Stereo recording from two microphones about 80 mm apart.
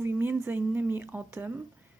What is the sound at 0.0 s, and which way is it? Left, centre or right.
A woman's voice, right.